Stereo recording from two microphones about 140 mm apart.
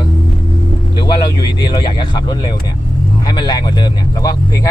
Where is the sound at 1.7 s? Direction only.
30° left (ahead or behind).